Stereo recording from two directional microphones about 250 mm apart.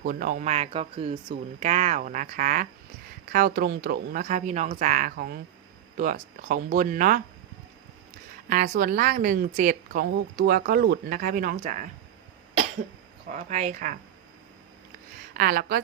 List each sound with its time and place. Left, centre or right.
0.0 s a woman's voice: right
8.4 s a woman's voice: right
13.3 s speech: right
15.4 s a woman's voice: right